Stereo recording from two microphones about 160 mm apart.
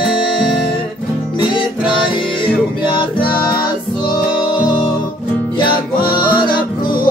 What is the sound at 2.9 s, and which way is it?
Music, 30° left (ahead or behind).